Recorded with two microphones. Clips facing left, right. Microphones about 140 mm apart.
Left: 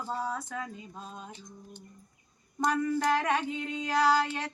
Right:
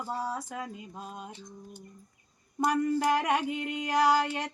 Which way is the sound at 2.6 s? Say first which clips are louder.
Right 1 dB; 15° right (ahead or behind).